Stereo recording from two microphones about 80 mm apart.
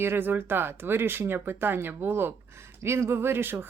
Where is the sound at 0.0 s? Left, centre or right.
Right.